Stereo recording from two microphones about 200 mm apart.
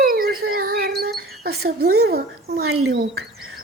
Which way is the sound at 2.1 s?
50° right (ahead or behind).